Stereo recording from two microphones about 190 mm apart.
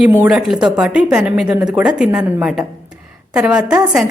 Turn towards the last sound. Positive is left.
turn(degrees=-5)  # may be behind; listen again after turning